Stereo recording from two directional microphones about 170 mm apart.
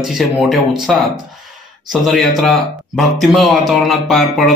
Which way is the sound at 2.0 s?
Centre (ahead or behind).